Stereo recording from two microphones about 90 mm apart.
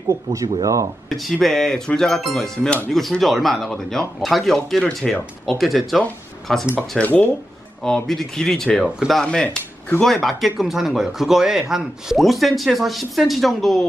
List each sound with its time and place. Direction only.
0.1 s speech: 40° right (ahead or behind)
1.1 s speech: centre (ahead or behind)
7.0 s speech: 15° left (ahead or behind)
7.8 s speech: 5° left (ahead or behind)
8.8 s speech: 5° right (ahead or behind)
9.2 s speech: 10° left (ahead or behind)